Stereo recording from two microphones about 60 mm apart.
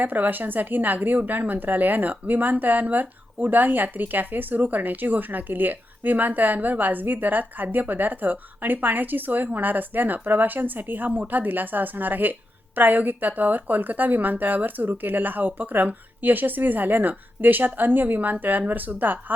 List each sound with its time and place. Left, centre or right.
0.0 s a woman's voice: right